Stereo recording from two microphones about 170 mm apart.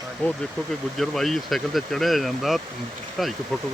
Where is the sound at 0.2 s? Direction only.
10° left (ahead or behind).